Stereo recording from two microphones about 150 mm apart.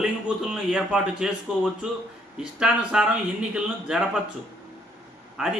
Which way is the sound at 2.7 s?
5° right (ahead or behind).